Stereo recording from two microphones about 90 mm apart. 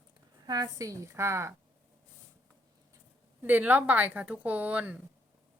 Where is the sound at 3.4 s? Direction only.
20° right (ahead or behind).